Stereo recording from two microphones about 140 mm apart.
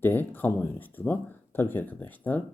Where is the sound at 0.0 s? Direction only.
15° left (ahead or behind).